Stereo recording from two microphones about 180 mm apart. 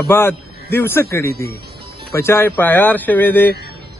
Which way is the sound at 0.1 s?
10° left (ahead or behind).